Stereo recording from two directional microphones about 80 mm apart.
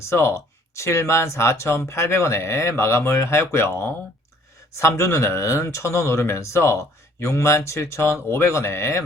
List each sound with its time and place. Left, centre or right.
0.0 s speech: left